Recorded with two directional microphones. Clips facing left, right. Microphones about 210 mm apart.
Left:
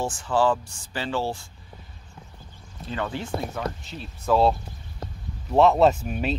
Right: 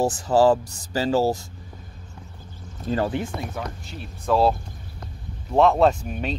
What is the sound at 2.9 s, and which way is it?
Speech, 45° right (ahead or behind).